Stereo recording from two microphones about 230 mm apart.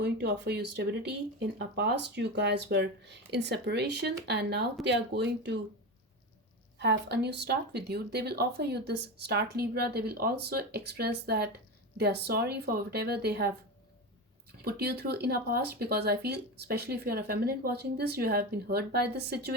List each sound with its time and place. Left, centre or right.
0.0 s speech: right
6.7 s speech: right
14.6 s speech: right